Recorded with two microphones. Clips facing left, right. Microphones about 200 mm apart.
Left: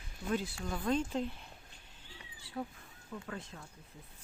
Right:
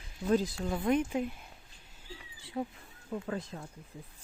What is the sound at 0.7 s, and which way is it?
Speech, 20° right (ahead or behind).